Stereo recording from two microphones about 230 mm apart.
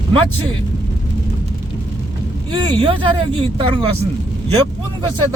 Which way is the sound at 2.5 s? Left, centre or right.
Right.